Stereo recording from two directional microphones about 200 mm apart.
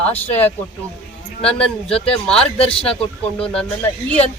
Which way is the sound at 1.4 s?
5° left (ahead or behind).